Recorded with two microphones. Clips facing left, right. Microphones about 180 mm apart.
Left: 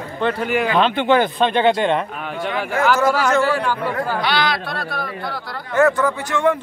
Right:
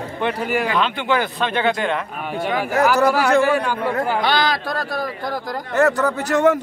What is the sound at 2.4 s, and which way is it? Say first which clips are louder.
Speech: right 2 dB; 40° right (ahead or behind).